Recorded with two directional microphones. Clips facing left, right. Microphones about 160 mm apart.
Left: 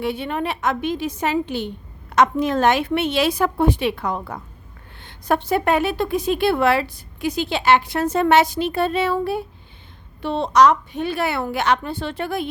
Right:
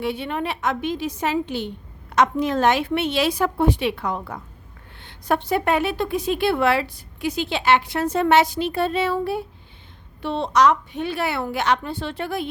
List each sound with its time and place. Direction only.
0.0 s a woman's voice: 45° left (ahead or behind)
10.2 s a woman's voice: 45° left (ahead or behind)